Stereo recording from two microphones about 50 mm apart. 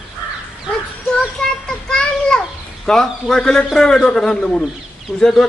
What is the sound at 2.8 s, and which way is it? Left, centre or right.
A man's voice, centre.